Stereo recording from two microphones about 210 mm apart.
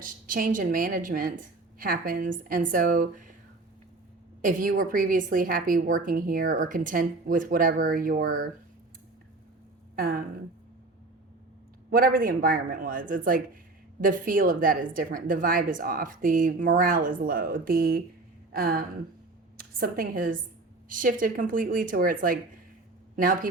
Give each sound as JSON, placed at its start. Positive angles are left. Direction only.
{"t": 0.0, "sound": "a woman's voice", "side_deg": -40}
{"t": 4.4, "sound": "a woman's voice", "side_deg": -40}
{"t": 9.9, "sound": "speech", "side_deg": -45}
{"t": 11.9, "sound": "a woman's voice", "side_deg": -45}